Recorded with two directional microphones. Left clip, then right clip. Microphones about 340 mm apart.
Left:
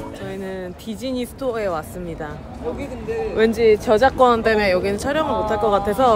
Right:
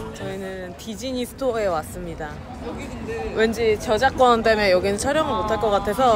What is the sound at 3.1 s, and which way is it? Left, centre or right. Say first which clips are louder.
Speech: left 5 dB; left.